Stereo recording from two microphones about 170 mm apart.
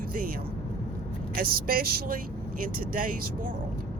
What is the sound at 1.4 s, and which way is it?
Speech, 55° right (ahead or behind).